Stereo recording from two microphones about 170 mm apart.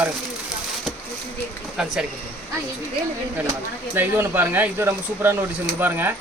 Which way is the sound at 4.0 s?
10° right (ahead or behind).